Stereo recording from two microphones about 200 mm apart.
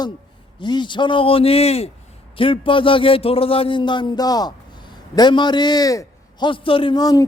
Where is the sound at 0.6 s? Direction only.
20° left (ahead or behind).